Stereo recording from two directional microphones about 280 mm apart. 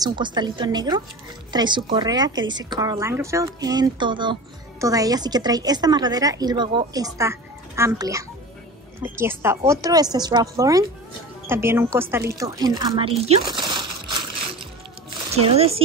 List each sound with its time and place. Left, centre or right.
0.0 s a woman's voice: centre
13.3 s a sound: centre
15.3 s speech: right